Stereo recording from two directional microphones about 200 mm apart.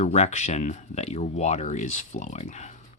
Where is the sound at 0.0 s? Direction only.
35° left (ahead or behind).